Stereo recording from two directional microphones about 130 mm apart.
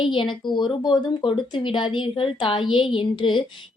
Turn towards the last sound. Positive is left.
turn(degrees=40)  # may be behind; listen again after turning